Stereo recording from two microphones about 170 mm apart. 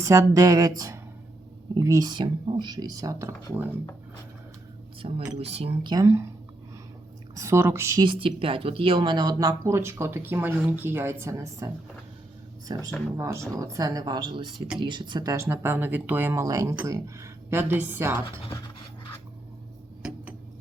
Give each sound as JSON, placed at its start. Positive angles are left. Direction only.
{"t": 0.0, "sound": "speech", "side_deg": -20}
{"t": 5.0, "sound": "speech", "side_deg": -40}
{"t": 7.3, "sound": "speech", "side_deg": -15}
{"t": 8.0, "sound": "speech", "side_deg": -30}
{"t": 12.7, "sound": "speech", "side_deg": -25}